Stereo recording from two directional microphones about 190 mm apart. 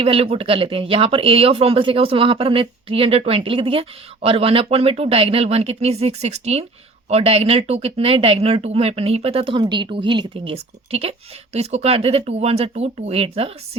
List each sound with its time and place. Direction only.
0.0 s speech: 30° right (ahead or behind)